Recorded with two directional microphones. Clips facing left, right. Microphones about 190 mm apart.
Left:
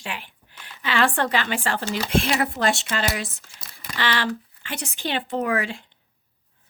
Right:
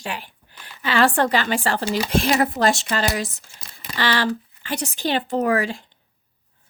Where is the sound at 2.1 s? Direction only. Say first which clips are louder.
Right 2 dB; 40° right (ahead or behind).